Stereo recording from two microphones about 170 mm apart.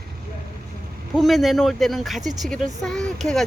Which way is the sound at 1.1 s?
Centre (ahead or behind).